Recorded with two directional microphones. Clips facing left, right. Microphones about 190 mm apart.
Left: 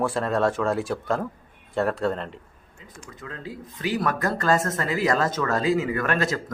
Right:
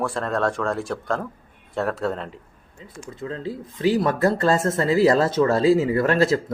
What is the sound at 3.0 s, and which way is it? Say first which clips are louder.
Speech: right 8 dB; 30° right (ahead or behind).